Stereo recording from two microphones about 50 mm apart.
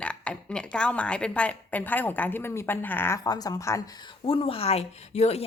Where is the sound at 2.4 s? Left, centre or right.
Left.